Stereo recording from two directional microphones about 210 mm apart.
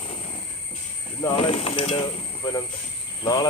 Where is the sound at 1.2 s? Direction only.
25° left (ahead or behind).